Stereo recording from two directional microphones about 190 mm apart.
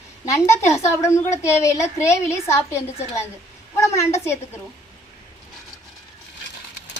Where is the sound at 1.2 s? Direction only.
40° left (ahead or behind).